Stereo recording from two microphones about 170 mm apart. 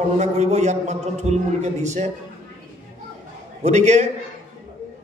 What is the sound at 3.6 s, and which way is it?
Speech, 40° right (ahead or behind).